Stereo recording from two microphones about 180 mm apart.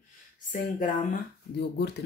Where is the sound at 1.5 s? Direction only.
70° left (ahead or behind).